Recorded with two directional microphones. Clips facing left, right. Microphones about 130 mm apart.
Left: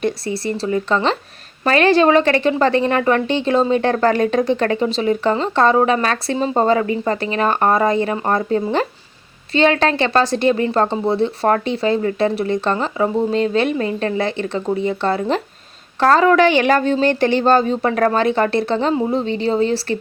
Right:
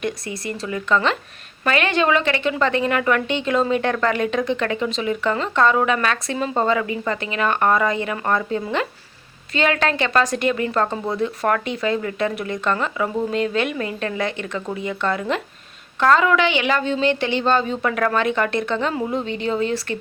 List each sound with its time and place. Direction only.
0.0 s a woman's voice: 35° left (ahead or behind)